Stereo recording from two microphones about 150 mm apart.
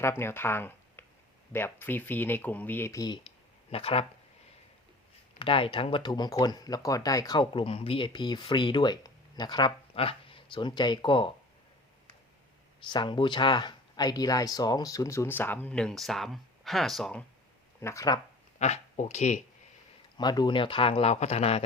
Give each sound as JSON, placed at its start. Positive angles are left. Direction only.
{"t": 0.0, "sound": "speech", "side_deg": 15}
{"t": 3.7, "sound": "speech", "side_deg": 40}
{"t": 5.4, "sound": "speech", "side_deg": 35}
{"t": 12.8, "sound": "speech", "side_deg": 30}
{"t": 17.7, "sound": "speech", "side_deg": 20}
{"t": 18.6, "sound": "speech", "side_deg": 50}
{"t": 20.1, "sound": "speech", "side_deg": 30}